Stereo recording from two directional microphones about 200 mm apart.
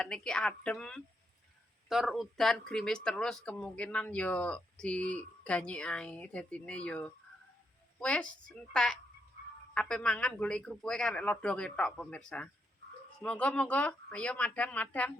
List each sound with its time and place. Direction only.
0.0 s speech: 5° left (ahead or behind)